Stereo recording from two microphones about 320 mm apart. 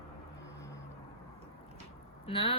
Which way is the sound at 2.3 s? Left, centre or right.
Centre.